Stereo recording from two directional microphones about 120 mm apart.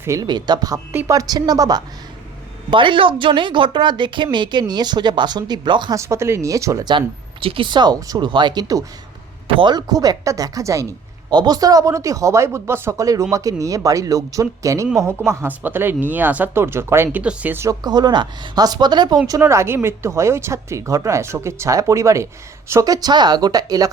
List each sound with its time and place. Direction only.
0.0 s speech: 25° right (ahead or behind)
0.3 s a woman's voice: 35° right (ahead or behind)
2.6 s a woman's voice: 45° right (ahead or behind)
5.9 s a woman's voice: 25° right (ahead or behind)
7.4 s a woman's voice: 45° right (ahead or behind); by 17.7 s 15° right (ahead or behind)
17.7 s a woman's voice: 35° right (ahead or behind)
19.4 s a woman's voice: 20° right (ahead or behind)